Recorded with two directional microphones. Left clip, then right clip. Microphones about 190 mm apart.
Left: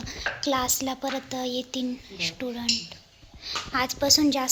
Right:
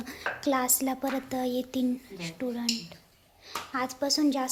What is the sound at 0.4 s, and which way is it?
A woman's voice, 15° right (ahead or behind).